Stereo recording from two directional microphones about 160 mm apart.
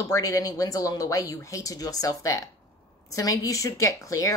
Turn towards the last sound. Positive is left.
turn(degrees=20)  # may be behind; listen again after turning